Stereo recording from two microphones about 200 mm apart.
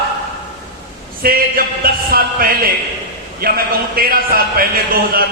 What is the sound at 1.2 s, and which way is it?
A man's voice, 45° right (ahead or behind).